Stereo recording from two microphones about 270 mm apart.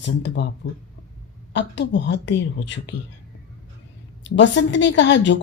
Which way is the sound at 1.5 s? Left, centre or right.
Left.